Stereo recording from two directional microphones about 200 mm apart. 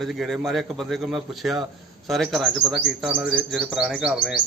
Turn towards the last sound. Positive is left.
turn(degrees=-5)  # may be behind; listen again after turning